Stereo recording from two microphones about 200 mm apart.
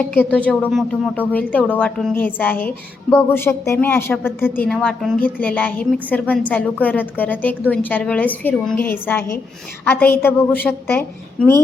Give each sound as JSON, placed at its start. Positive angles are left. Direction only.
{"t": 0.0, "sound": "a woman's voice", "side_deg": 10}